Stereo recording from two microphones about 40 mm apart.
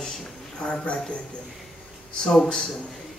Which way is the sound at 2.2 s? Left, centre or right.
Centre.